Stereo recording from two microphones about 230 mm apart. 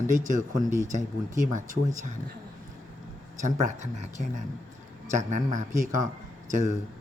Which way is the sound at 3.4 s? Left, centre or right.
Right.